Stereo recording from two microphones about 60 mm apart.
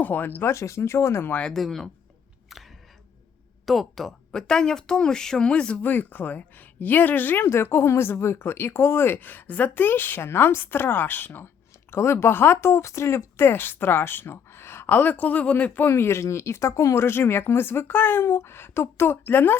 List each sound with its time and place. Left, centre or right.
0.0 s speech: left
0.5 s speech: left
1.3 s speech: centre
1.5 s speech: centre
3.7 s speech: centre
5.8 s speech: left
7.4 s speech: left
11.9 s speech: left
14.8 s speech: left
15.9 s speech: left